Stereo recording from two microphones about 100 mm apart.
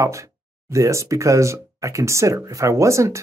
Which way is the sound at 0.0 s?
30° right (ahead or behind).